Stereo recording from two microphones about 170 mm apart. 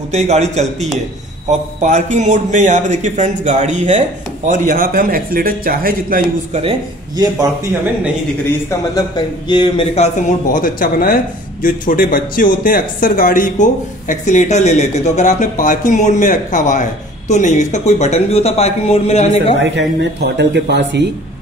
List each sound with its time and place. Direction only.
0.1 s a man's voice: 40° right (ahead or behind); by 6.2 s 55° right (ahead or behind)
8.9 s speech: 25° left (ahead or behind)
9.9 s speech: 45° left (ahead or behind)
19.6 s speech: 90° right